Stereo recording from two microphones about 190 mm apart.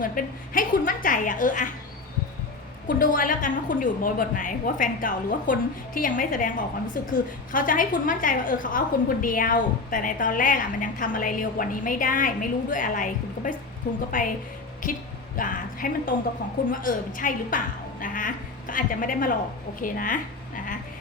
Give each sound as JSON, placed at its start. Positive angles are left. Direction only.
{"t": 0.0, "sound": "a woman's voice", "side_deg": 45}
{"t": 2.8, "sound": "a woman's voice", "side_deg": 45}